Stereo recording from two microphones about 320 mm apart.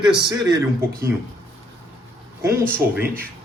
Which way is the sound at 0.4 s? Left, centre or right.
Centre.